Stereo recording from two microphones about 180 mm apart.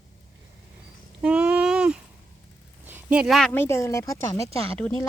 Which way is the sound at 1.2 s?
5° right (ahead or behind).